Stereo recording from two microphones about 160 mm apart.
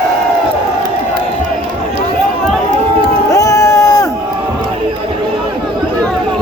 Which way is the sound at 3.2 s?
20° left (ahead or behind).